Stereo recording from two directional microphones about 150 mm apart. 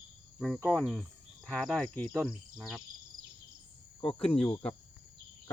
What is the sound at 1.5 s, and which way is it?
Speech, 5° left (ahead or behind).